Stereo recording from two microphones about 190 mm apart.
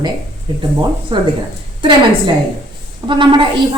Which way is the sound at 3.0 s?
25° right (ahead or behind).